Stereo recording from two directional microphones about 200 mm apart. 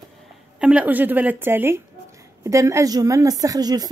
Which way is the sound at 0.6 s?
5° right (ahead or behind).